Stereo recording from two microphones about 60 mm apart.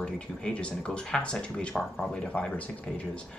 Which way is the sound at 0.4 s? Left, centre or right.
Centre.